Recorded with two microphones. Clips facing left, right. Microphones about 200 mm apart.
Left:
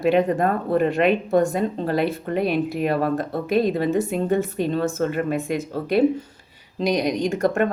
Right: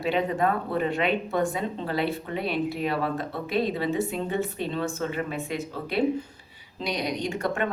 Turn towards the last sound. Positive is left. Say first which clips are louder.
# left 7 dB
turn(degrees=45)  # may be behind; listen again after turning